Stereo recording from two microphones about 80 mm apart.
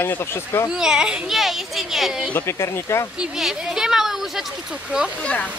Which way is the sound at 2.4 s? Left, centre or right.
Left.